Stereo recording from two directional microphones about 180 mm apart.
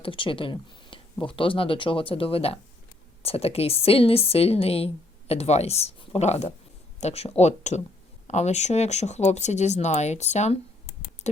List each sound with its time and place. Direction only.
0.0 s speech: 30° left (ahead or behind)